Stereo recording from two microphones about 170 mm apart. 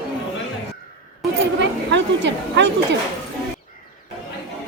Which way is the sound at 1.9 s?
90° right.